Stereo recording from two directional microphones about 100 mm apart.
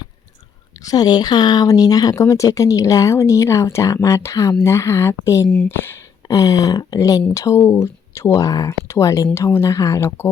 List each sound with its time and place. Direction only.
0.8 s a woman's voice: 40° left (ahead or behind); by 6.0 s 25° left (ahead or behind)
6.2 s a woman's voice: 40° left (ahead or behind)